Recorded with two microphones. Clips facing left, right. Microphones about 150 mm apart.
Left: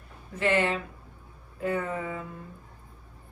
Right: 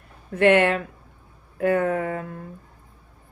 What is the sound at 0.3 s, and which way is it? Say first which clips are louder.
A woman's voice: right 8 dB; 65° right (ahead or behind).